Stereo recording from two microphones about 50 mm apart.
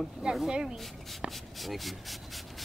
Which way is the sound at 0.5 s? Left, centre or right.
Centre.